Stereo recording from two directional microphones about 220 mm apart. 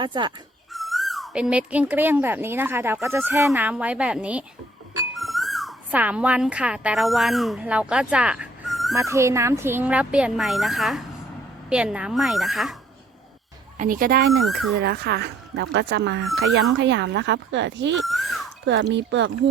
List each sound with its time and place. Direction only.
0.0 s speech: 20° right (ahead or behind)
0.7 s speech: centre (ahead or behind)
9.0 s speech: 15° right (ahead or behind)
13.7 s speech: 40° right (ahead or behind)
14.3 s speech: centre (ahead or behind)
14.8 s speech: 50° right (ahead or behind)
18.0 s speech: centre (ahead or behind)
18.6 s speech: 55° right (ahead or behind)